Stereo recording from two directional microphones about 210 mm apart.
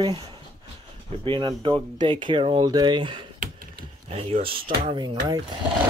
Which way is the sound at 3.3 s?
45° right (ahead or behind).